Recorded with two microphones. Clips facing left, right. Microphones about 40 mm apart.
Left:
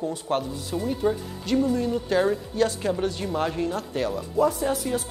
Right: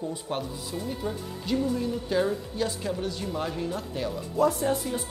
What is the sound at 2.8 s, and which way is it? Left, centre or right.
Speech, left.